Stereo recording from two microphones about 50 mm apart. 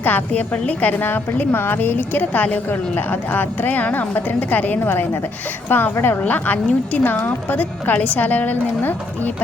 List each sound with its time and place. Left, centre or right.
0.0 s a woman's voice: left
0.5 s a woman's voice: left